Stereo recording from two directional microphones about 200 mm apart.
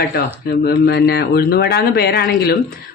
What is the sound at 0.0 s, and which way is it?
Speech, 50° left (ahead or behind).